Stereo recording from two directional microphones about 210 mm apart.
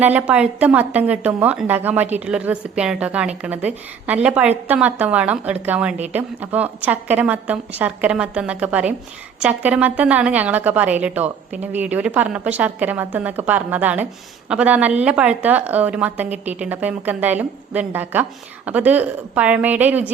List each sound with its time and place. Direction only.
0.0 s a woman's voice: 5° right (ahead or behind)